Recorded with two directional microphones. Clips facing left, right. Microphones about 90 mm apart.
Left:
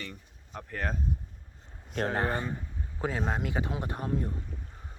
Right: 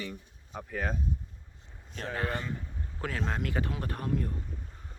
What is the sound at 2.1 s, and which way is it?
Speech, 30° left (ahead or behind).